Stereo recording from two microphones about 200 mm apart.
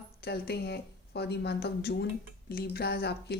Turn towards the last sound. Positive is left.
turn(degrees=55)  # may be behind; listen again after turning